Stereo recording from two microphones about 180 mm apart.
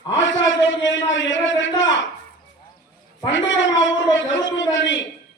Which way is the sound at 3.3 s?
90° left.